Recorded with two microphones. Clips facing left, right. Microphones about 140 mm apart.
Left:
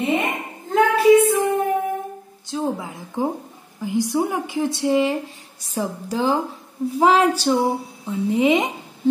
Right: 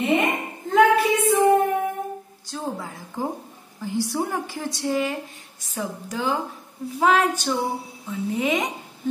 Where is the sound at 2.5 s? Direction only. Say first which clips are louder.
Left 6 dB; 20° left (ahead or behind).